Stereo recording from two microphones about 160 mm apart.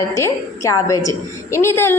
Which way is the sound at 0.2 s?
20° left (ahead or behind).